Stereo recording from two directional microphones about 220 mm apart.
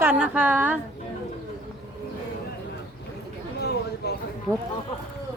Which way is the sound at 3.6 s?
50° left (ahead or behind).